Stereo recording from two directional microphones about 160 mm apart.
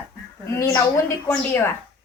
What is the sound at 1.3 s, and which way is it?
Speech, 15° left (ahead or behind).